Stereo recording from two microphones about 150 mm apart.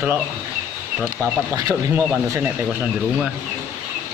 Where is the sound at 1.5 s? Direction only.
25° right (ahead or behind).